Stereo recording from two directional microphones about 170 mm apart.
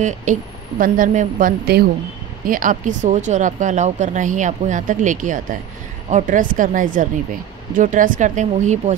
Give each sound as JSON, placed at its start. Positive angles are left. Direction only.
{"t": 0.0, "sound": "speech", "side_deg": -45}